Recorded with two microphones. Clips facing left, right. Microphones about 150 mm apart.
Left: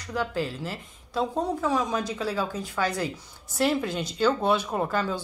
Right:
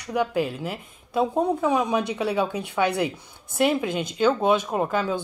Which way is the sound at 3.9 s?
55° right (ahead or behind).